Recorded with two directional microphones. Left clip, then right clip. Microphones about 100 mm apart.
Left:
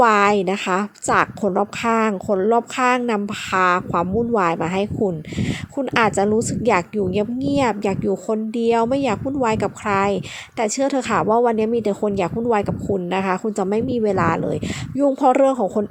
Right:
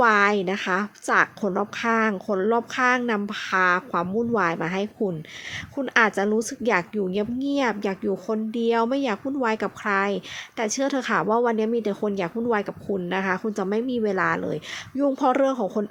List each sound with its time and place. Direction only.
0.0 s a woman's voice: 30° left (ahead or behind)